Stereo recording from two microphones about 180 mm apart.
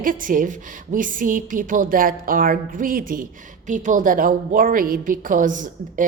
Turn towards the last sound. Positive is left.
turn(degrees=-45)  # may be behind; listen again after turning